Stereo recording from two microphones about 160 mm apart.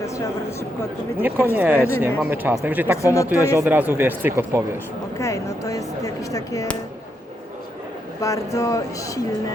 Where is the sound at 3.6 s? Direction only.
10° right (ahead or behind).